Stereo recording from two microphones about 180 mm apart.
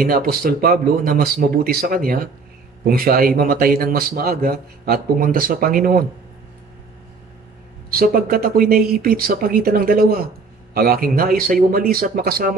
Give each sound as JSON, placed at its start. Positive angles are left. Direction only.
{"t": 0.0, "sound": "a man's voice", "side_deg": -55}
{"t": 7.9, "sound": "a man's voice", "side_deg": -55}